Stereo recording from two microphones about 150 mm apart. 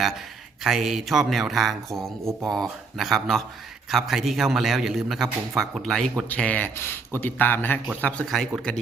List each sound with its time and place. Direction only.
0.6 s a man's voice: centre (ahead or behind)
2.2 s speech: 25° right (ahead or behind)
3.0 s a man's voice: centre (ahead or behind)